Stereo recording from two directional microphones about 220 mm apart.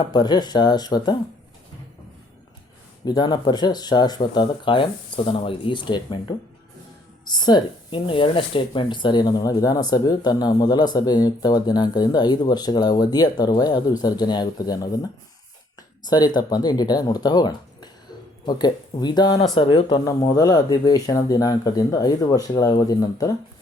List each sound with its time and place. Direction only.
0.0 s speech: 20° left (ahead or behind)
3.0 s speech: 20° left (ahead or behind)
16.0 s speech: 20° left (ahead or behind)